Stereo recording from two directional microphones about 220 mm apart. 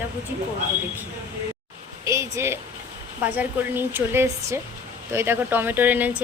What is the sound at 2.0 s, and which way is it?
Speech, 15° right (ahead or behind).